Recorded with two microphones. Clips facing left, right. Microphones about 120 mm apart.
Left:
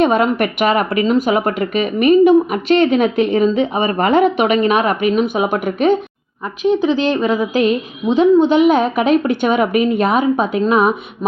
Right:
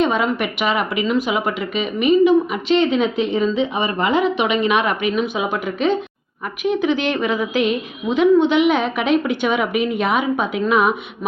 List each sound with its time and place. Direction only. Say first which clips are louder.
0.0 s a woman's voice: left 5 dB; 55° left (ahead or behind)
6.6 s a woman's voice: left 4 dB; 30° left (ahead or behind)